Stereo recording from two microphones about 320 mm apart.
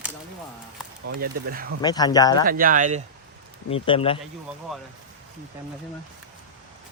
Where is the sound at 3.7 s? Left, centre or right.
Centre.